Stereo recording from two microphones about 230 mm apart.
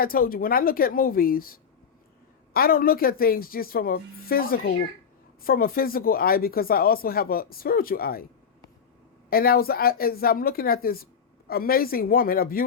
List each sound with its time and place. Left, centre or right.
0.0 s speech: left
9.3 s speech: left